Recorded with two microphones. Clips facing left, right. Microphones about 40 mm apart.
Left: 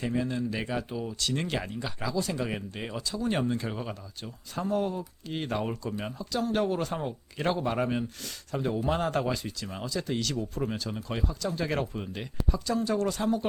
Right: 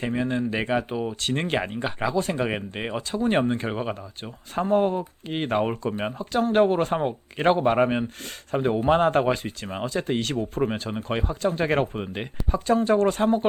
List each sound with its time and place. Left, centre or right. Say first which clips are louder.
0.0 s speech: right 4 dB; right